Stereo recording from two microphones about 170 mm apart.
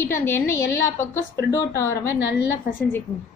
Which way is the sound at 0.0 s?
15° left (ahead or behind).